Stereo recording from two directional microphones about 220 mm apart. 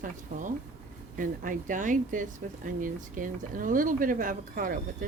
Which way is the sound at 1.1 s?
40° right (ahead or behind).